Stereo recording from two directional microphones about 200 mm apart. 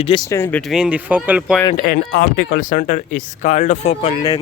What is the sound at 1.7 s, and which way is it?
Speech, 45° left (ahead or behind).